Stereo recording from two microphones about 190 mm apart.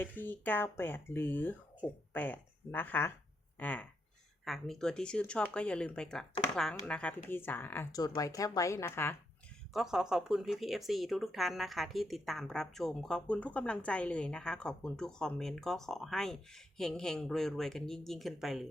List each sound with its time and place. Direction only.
0.0 s a woman's voice: 10° left (ahead or behind)
9.7 s speech: centre (ahead or behind)